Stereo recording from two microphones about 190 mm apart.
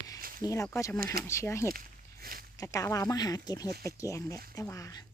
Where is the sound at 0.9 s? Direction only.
50° right (ahead or behind).